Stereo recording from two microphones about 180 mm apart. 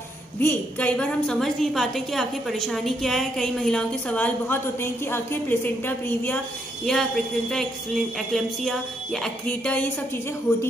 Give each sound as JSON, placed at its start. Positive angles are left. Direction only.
{"t": 0.4, "sound": "a woman's voice", "side_deg": 10}
{"t": 10.5, "sound": "a man's voice", "side_deg": 20}